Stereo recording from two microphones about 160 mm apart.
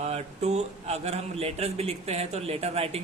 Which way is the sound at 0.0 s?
45° right (ahead or behind).